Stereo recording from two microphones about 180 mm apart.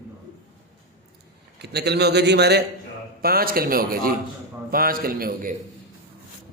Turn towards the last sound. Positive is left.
turn(degrees=-50)  # may be behind; listen again after turning